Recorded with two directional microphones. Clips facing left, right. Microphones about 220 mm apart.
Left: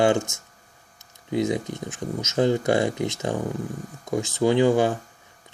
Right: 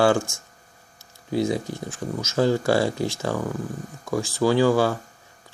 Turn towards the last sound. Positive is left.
turn(degrees=20)  # may be behind; listen again after turning